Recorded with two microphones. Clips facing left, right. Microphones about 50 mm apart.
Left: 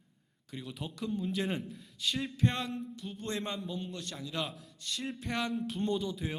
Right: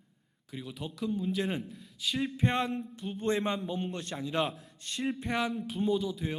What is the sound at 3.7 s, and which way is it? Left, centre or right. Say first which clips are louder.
Speech: right 4 dB; right.